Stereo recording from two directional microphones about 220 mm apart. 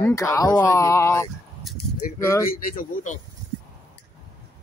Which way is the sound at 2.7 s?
35° left (ahead or behind).